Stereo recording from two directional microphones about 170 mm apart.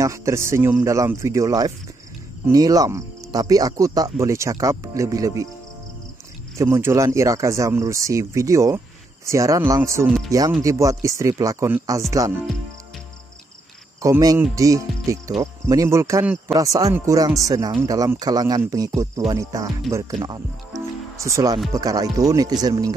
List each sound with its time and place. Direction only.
0.0 s speech: 15° right (ahead or behind)
6.6 s speech: 15° right (ahead or behind)
14.0 s speech: 20° right (ahead or behind)